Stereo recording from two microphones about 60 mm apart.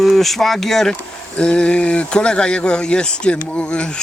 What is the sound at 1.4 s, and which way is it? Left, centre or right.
Speech, centre.